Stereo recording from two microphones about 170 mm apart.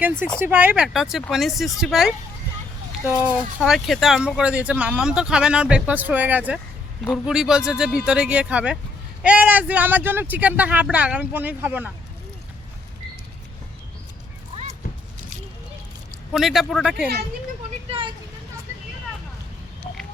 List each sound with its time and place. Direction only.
0.3 s speech: 10° right (ahead or behind)
16.3 s speech: centre (ahead or behind)
17.8 s vehicle: 30° right (ahead or behind)